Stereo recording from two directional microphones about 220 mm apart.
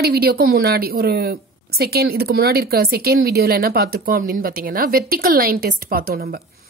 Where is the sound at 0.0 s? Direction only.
45° right (ahead or behind).